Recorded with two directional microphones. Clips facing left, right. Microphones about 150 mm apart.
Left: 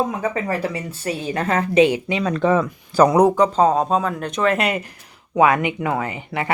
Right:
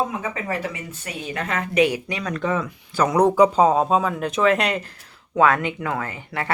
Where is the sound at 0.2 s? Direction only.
35° left (ahead or behind).